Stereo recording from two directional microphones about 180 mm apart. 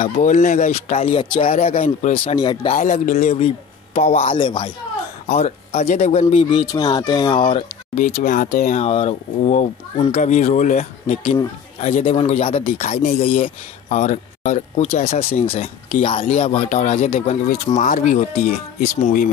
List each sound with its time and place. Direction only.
0.0 s speech: 45° left (ahead or behind)
2.3 s speech: 25° left (ahead or behind)
2.7 s speech: 45° left (ahead or behind)
4.4 s speech: 25° left (ahead or behind)
5.2 s speech: 40° left (ahead or behind)
6.7 s speech: 20° left (ahead or behind)
7.5 s speech: 40° left (ahead or behind)